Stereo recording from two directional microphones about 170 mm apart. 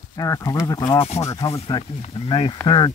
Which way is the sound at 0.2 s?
20° left (ahead or behind).